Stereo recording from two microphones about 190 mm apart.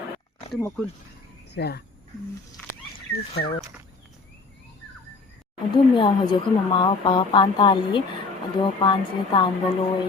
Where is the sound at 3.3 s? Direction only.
55° left (ahead or behind).